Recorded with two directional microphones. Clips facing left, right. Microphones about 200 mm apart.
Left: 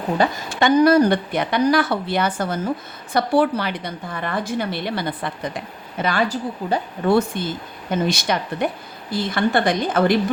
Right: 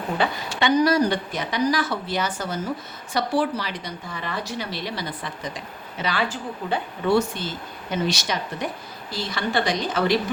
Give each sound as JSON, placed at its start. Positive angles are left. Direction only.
{"t": 0.2, "sound": "a woman's voice", "side_deg": 45}
{"t": 7.1, "sound": "speech", "side_deg": 55}